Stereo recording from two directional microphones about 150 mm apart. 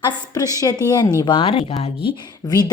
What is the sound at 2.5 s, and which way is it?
Speech, 25° left (ahead or behind).